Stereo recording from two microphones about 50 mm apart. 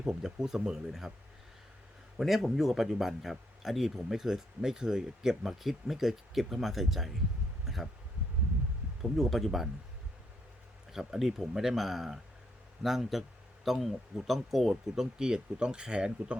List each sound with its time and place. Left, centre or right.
0.1 s speech: centre
2.1 s speech: centre
7.6 s a sound: centre
9.0 s speech: centre
10.9 s speech: centre
15.2 s speech: centre